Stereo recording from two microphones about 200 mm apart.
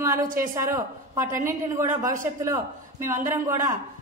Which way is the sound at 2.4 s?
15° right (ahead or behind).